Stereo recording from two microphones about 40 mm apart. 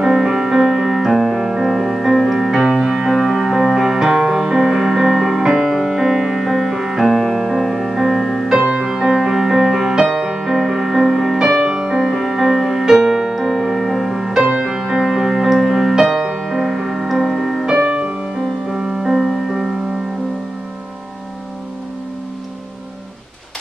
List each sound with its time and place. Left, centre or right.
0.0 s music: centre
3.7 s music: centre
5.6 s music: centre
8.8 s music: centre
14.4 s music: right
17.7 s music: right
18.8 s music: centre